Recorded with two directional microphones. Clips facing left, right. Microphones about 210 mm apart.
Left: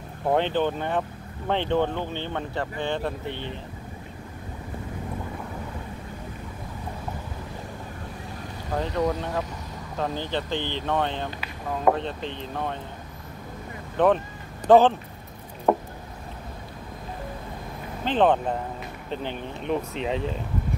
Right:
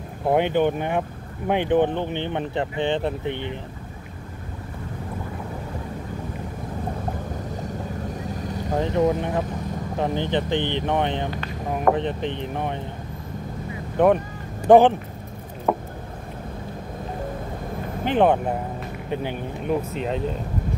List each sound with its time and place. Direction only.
0.3 s speech: 15° right (ahead or behind)
8.7 s speech: 20° right (ahead or behind)
13.9 s speech: 10° right (ahead or behind)
15.7 s a sound: centre (ahead or behind)
18.0 s speech: 10° right (ahead or behind)
19.6 s speech: 5° right (ahead or behind)